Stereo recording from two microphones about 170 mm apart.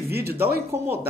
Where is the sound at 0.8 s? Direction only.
15° right (ahead or behind).